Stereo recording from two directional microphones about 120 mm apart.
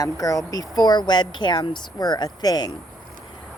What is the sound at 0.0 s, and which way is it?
Speech, 30° left (ahead or behind).